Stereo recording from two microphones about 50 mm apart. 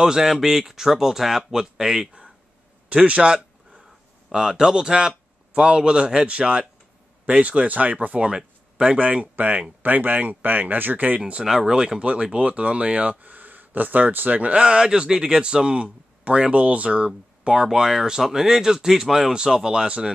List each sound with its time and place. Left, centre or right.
0.0 s speech: centre; by 8.3 s right
8.3 s speech: centre; by 11.1 s right
11.1 s speech: centre
17.6 s speech: centre